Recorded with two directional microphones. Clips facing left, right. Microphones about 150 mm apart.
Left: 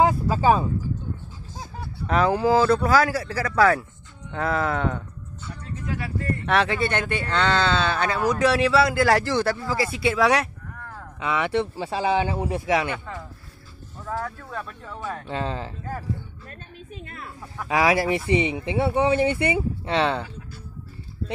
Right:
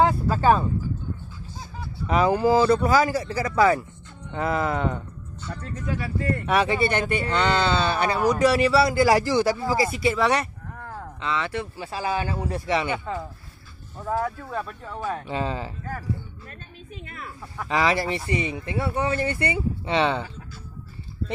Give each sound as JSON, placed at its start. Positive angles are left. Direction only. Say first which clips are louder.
{"t": 0.0, "sound": "a sound", "louder": "even", "side_deg": 5}
{"t": 1.6, "sound": "a sound", "louder": "left 1 dB", "side_deg": 50}
{"t": 2.0, "sound": "speech", "louder": "even", "side_deg": -5}
{"t": 10.0, "sound": "speech", "louder": "left 4 dB", "side_deg": 5}
{"t": 10.7, "sound": "a sound", "louder": "right 3 dB", "side_deg": -25}
{"t": 11.1, "sound": "speech", "louder": "left 3 dB", "side_deg": 15}
{"t": 11.6, "sound": "speech", "louder": "left 4 dB", "side_deg": 30}
{"t": 12.6, "sound": "speech", "louder": "left 1 dB", "side_deg": 0}
{"t": 13.9, "sound": "speech", "louder": "right 4 dB", "side_deg": -25}
{"t": 14.2, "sound": "speech", "louder": "right 4 dB", "side_deg": -10}
{"t": 17.0, "sound": "speech", "louder": "right 2 dB", "side_deg": 35}
{"t": 17.6, "sound": "speech", "louder": "left 2 dB", "side_deg": 5}
{"t": 19.8, "sound": "speech", "louder": "right 3 dB", "side_deg": 0}